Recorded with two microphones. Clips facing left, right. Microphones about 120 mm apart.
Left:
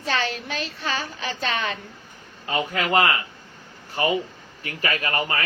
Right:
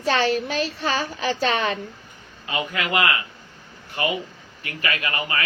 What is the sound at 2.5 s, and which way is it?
Speech, 35° left (ahead or behind).